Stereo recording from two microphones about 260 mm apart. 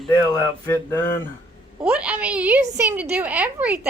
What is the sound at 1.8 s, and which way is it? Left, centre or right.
A woman's voice, centre.